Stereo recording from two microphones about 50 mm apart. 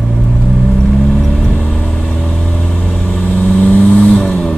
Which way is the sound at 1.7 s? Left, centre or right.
Centre.